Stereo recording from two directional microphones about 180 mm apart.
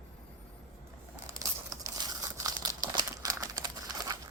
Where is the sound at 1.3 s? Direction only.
20° right (ahead or behind).